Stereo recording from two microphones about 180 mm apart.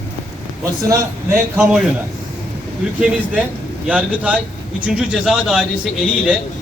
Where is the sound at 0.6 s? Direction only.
15° right (ahead or behind).